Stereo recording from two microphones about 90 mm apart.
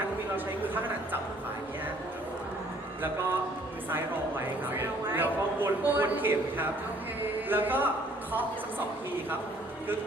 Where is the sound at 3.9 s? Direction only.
25° right (ahead or behind).